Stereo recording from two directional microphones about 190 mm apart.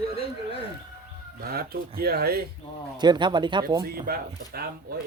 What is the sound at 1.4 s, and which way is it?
Speech, 50° right (ahead or behind).